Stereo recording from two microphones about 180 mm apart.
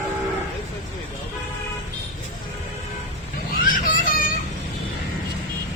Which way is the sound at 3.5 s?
50° left (ahead or behind).